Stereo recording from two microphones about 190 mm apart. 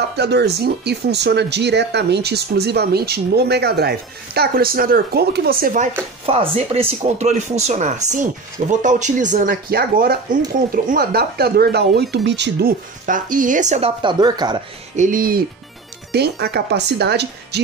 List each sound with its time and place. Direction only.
0.1 s speech: 60° right (ahead or behind)
6.2 s speech: 30° right (ahead or behind)
15.0 s speech: 45° right (ahead or behind); by 17.6 s 60° right (ahead or behind)